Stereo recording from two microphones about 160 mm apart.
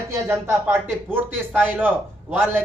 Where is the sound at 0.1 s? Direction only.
15° right (ahead or behind).